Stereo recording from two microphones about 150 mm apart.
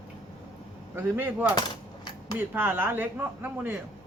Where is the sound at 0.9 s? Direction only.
15° right (ahead or behind).